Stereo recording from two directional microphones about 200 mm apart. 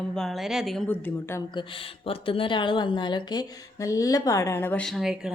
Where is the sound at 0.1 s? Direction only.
Centre (ahead or behind).